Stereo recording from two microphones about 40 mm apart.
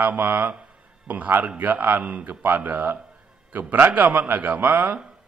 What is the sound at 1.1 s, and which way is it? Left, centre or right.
Speech, right.